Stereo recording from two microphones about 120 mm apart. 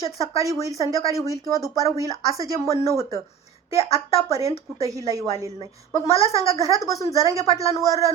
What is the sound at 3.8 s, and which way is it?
Speech, 55° left (ahead or behind).